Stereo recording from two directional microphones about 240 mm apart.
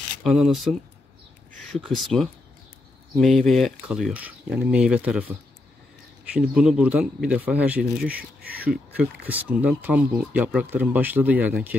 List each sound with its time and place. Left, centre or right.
0.2 s speech: centre
6.3 s speech: centre
8.1 s speech: right
9.3 s speech: centre